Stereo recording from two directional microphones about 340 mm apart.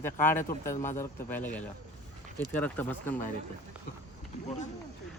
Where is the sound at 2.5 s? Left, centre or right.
Centre.